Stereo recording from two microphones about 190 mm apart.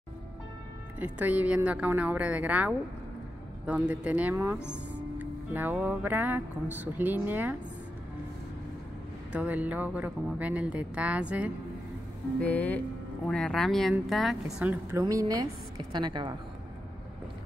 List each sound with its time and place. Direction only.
0.9 s speech: 10° right (ahead or behind)
9.3 s speech: 10° right (ahead or behind)
12.4 s a woman's voice: 10° left (ahead or behind); by 16.3 s 25° right (ahead or behind)